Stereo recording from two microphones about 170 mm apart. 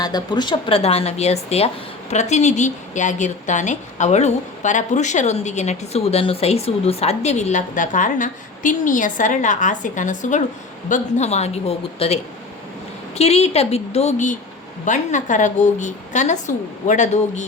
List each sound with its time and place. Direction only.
0.0 s a woman's voice: 25° left (ahead or behind); by 17.4 s 45° left (ahead or behind)